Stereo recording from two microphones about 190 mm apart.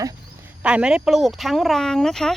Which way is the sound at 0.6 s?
5° right (ahead or behind).